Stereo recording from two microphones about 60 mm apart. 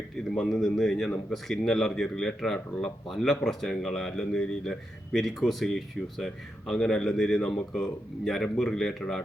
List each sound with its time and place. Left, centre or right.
0.3 s a man's voice: centre